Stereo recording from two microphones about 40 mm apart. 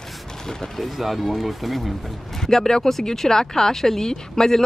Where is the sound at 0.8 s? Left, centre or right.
Centre.